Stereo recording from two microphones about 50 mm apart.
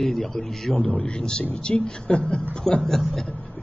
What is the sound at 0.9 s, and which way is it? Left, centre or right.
A woman's voice, centre.